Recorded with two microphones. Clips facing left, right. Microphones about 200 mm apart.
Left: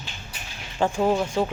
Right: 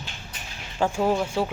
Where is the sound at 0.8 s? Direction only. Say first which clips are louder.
Left 1 dB; 5° right (ahead or behind).